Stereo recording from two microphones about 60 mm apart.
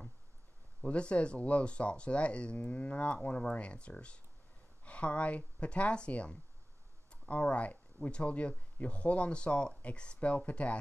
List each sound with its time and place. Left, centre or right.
0.8 s speech: centre